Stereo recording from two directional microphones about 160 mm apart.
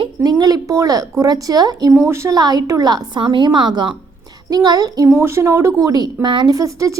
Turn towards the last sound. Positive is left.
turn(degrees=-20)  # may be behind; listen again after turning